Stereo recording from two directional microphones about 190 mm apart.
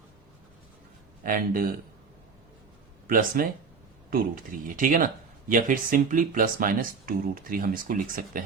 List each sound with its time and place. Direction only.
1.2 s speech: 50° right (ahead or behind)
3.1 s speech: 45° right (ahead or behind)